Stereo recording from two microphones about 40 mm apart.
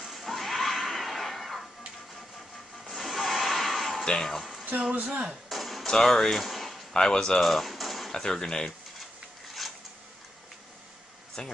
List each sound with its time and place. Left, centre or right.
0.0 s neigh: centre
2.8 s a sound: centre
4.0 s speech: centre
4.4 s a sound: centre
5.9 s speech: centre
6.9 s speech: centre
8.1 s speech: centre
9.6 s a sound: centre
11.4 s speech: left